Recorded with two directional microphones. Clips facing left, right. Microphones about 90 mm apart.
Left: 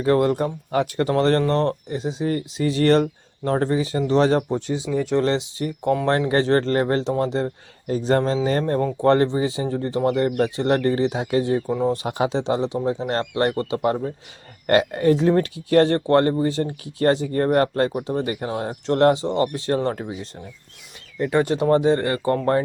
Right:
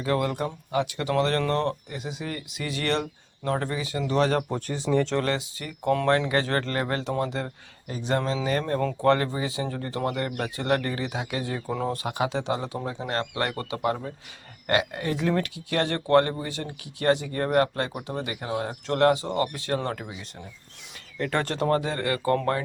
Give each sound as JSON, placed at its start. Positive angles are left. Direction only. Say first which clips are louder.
{"t": 0.0, "sound": "speech", "louder": "left 7 dB", "side_deg": 35}
{"t": 0.7, "sound": "speech", "louder": "left 5 dB", "side_deg": 45}
{"t": 4.5, "sound": "speech", "louder": "left 2 dB", "side_deg": 15}
{"t": 5.1, "sound": "speech", "louder": "left 6 dB", "side_deg": 25}
{"t": 8.8, "sound": "speech", "louder": "left 4 dB", "side_deg": 15}
{"t": 9.0, "sound": "speech", "louder": "left 5 dB", "side_deg": 30}
{"t": 11.7, "sound": "speech", "louder": "left 3 dB", "side_deg": 15}
{"t": 12.0, "sound": "speech", "louder": "left 5 dB", "side_deg": 30}
{"t": 14.7, "sound": "speech", "louder": "left 8 dB", "side_deg": 40}
{"t": 21.2, "sound": "speech", "louder": "left 6 dB", "side_deg": 15}
{"t": 21.7, "sound": "speech", "louder": "left 7 dB", "side_deg": 25}